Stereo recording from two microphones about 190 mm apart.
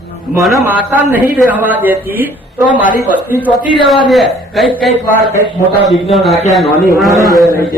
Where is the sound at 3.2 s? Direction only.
10° right (ahead or behind).